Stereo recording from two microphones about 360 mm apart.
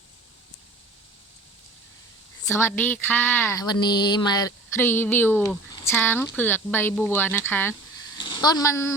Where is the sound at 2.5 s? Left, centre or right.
Centre.